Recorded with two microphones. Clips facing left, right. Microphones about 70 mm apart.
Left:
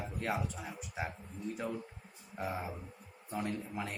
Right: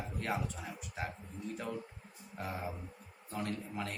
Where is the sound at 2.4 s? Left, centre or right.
Centre.